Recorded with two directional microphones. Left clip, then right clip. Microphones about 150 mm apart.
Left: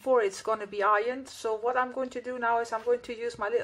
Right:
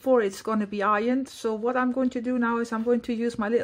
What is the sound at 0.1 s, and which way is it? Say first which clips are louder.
Speech: right 2 dB; 60° right (ahead or behind).